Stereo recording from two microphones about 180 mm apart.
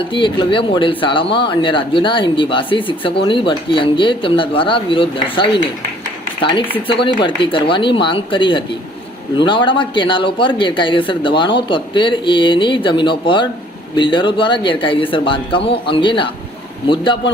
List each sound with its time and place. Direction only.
0.0 s speech: 30° left (ahead or behind)